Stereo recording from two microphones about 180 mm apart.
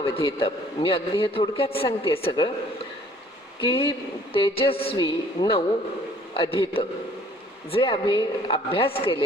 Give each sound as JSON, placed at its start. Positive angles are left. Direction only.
{"t": 0.3, "sound": "a man's voice", "side_deg": 30}
{"t": 3.6, "sound": "a man's voice", "side_deg": 30}